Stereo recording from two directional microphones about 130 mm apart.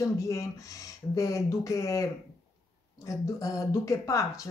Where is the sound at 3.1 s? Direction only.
25° left (ahead or behind).